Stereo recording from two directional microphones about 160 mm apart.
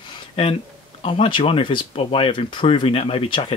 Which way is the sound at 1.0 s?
35° left (ahead or behind).